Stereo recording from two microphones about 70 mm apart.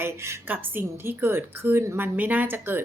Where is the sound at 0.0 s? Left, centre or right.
Right.